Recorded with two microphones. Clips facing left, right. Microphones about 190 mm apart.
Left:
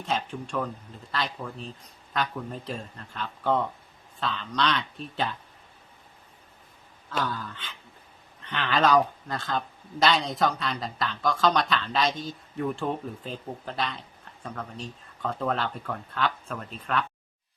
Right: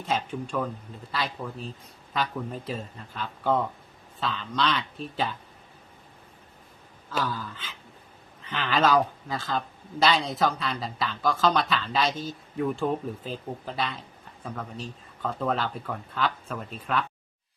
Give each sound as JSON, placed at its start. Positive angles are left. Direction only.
{"t": 0.0, "sound": "speech", "side_deg": 0}
{"t": 7.1, "sound": "speech", "side_deg": 0}